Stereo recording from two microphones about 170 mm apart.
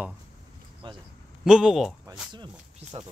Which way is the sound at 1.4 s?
5° right (ahead or behind).